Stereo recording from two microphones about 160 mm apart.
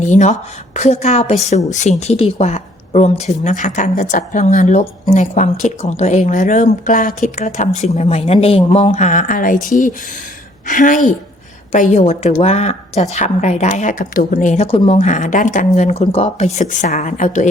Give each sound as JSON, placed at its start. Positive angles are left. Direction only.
{"t": 0.0, "sound": "a woman's voice", "side_deg": 45}